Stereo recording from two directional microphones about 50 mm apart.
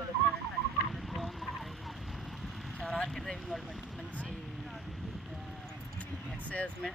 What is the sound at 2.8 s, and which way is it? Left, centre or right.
Speech, centre.